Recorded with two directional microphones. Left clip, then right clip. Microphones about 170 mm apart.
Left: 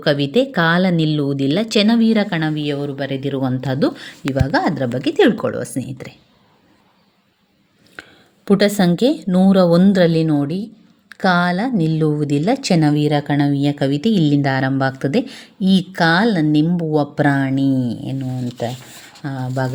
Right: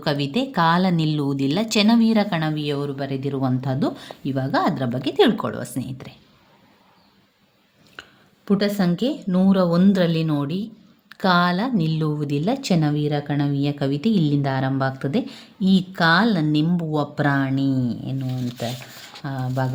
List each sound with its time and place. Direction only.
0.0 s speech: 15° left (ahead or behind)
8.4 s a woman's voice: 40° left (ahead or behind); by 17.8 s 20° left (ahead or behind)
17.8 s speech: 20° right (ahead or behind)
19.2 s speech: 25° left (ahead or behind)